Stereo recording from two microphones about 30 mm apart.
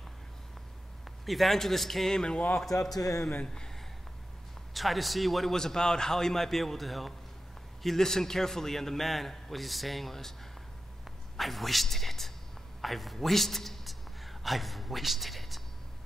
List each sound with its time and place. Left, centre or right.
1.2 s a man's voice: centre
2.1 s speech: left
2.5 s a man's voice: centre
4.7 s a man's voice: centre
5.6 s a man's voice: centre
11.3 s a man's voice: centre